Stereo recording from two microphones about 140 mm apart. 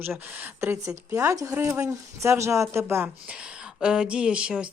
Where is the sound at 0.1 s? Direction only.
10° right (ahead or behind).